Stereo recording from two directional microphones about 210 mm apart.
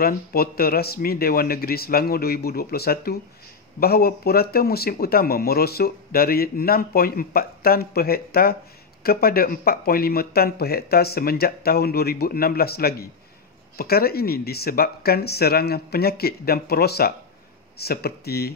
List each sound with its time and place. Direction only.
0.0 s speech: 45° left (ahead or behind)